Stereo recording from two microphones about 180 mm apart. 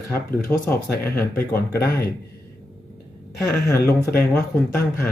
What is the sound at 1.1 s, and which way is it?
Speech, 15° left (ahead or behind).